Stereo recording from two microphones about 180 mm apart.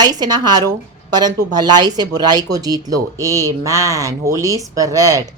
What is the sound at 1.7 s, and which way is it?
A man's voice, 20° right (ahead or behind).